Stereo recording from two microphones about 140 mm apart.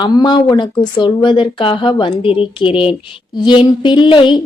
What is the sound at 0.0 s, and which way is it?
Speech, 30° left (ahead or behind).